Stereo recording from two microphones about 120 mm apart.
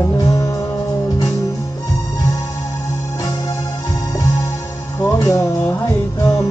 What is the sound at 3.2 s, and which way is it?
Organ, 30° left (ahead or behind).